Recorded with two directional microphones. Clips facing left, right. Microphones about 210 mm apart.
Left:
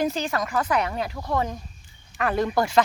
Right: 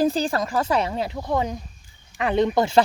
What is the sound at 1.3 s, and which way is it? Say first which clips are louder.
Speech: right 2 dB; 15° right (ahead or behind).